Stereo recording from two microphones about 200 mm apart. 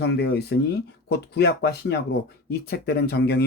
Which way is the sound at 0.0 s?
55° left (ahead or behind).